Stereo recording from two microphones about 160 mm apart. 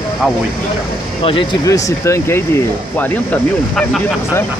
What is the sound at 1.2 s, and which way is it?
Speech, 30° left (ahead or behind).